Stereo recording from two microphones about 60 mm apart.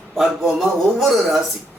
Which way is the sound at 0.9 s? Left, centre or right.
Centre.